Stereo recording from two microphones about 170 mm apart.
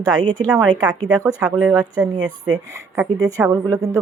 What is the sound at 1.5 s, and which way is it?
Speech, 5° right (ahead or behind).